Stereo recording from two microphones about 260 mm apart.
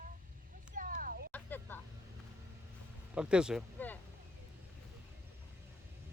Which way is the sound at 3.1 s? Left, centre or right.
Centre.